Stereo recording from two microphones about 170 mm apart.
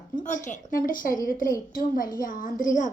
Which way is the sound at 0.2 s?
45° left (ahead or behind).